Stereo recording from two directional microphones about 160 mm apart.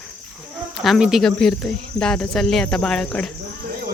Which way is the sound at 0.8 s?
Centre (ahead or behind).